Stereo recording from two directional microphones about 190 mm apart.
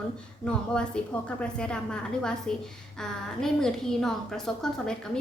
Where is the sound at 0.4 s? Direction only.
5° left (ahead or behind).